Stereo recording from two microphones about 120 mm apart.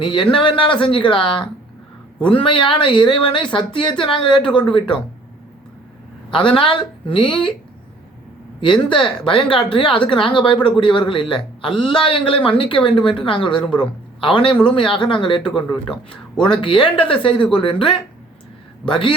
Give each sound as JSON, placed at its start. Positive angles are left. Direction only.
{"t": 0.0, "sound": "speech", "side_deg": 45}
{"t": 6.3, "sound": "speech", "side_deg": 45}
{"t": 8.6, "sound": "speech", "side_deg": 40}
{"t": 15.7, "sound": "a man's voice", "side_deg": 5}
{"t": 16.4, "sound": "speech", "side_deg": 45}